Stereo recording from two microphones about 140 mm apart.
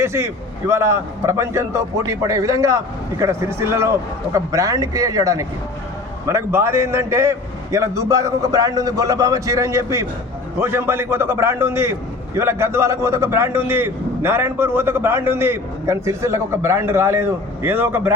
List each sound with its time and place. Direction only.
0.0 s a man's voice: 20° right (ahead or behind)